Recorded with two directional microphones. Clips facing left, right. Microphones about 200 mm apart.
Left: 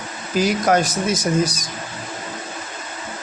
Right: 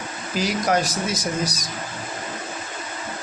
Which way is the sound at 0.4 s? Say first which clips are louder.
Left 3 dB; 50° left (ahead or behind).